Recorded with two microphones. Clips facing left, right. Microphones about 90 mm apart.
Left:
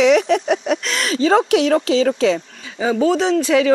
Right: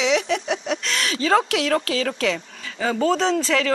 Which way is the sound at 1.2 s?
30° left (ahead or behind).